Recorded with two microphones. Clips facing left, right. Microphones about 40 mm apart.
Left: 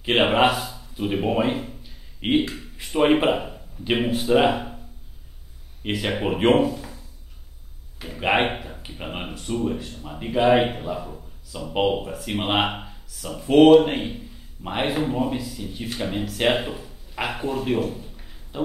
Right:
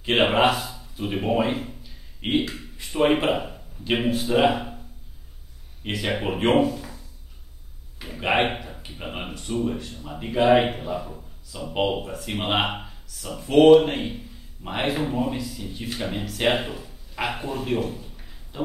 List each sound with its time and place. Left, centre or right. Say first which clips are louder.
0.0 s speech: left 1 dB; centre
1.8 s a sound: left 3 dB; centre
3.1 s speech: left 2 dB; centre
5.9 s speech: left 2 dB; centre
8.0 s speech: left 1 dB; centre